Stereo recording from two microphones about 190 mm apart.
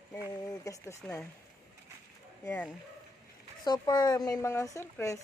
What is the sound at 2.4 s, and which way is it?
Speech, 10° left (ahead or behind).